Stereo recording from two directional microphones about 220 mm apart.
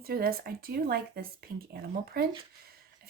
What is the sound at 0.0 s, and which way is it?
Speech, 45° right (ahead or behind).